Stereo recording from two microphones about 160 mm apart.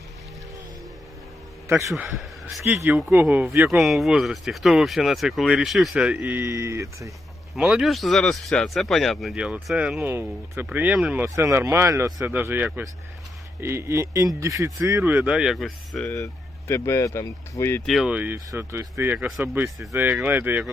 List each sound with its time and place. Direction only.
1.9 s a man's voice: centre (ahead or behind); by 7.1 s 20° right (ahead or behind)
7.5 s speech: 5° right (ahead or behind)
16.1 s speech: 15° left (ahead or behind)
17.8 s speech: centre (ahead or behind)